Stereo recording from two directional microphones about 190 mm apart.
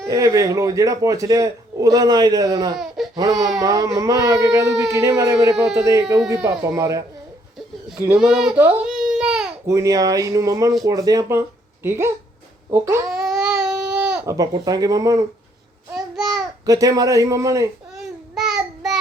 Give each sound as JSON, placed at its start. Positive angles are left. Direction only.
{"t": 0.0, "sound": "a man's voice", "side_deg": -15}
{"t": 7.9, "sound": "baby cry", "side_deg": -10}
{"t": 9.6, "sound": "a man's voice", "side_deg": -15}
{"t": 13.1, "sound": "baby cry", "side_deg": 0}
{"t": 14.3, "sound": "speech", "side_deg": -20}
{"t": 15.9, "sound": "babbling", "side_deg": 0}
{"t": 16.6, "sound": "a man's voice", "side_deg": -20}
{"t": 17.9, "sound": "babbling", "side_deg": 0}